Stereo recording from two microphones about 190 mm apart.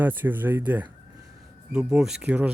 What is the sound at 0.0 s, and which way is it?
A man's voice, 10° right (ahead or behind).